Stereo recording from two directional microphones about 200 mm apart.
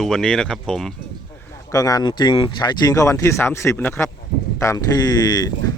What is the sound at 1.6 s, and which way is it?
Speech, 15° left (ahead or behind).